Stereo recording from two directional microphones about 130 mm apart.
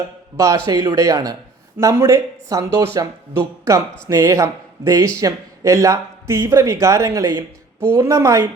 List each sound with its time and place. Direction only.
0.3 s speech: 25° right (ahead or behind)
4.1 s speech: 25° right (ahead or behind)